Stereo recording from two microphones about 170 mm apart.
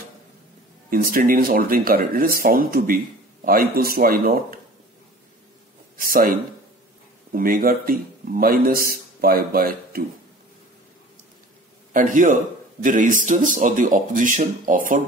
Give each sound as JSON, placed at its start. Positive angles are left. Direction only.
{"t": 0.8, "sound": "a man's voice", "side_deg": -55}
{"t": 5.9, "sound": "speech", "side_deg": -55}
{"t": 7.3, "sound": "a man's voice", "side_deg": -55}
{"t": 11.9, "sound": "speech", "side_deg": -50}